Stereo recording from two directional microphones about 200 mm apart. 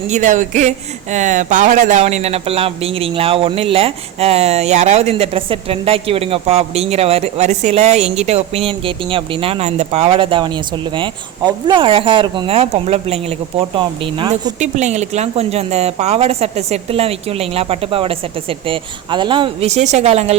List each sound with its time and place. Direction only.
0.1 s speech: 40° right (ahead or behind); by 14.5 s 20° right (ahead or behind)
14.6 s speech: 35° right (ahead or behind)